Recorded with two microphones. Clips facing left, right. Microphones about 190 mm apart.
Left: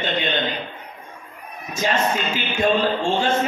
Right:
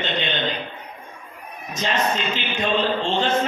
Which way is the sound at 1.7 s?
10° left (ahead or behind).